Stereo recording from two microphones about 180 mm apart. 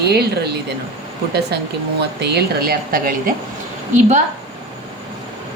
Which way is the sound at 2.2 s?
65° right (ahead or behind).